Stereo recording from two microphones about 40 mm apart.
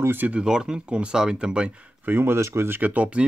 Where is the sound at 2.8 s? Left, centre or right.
Right.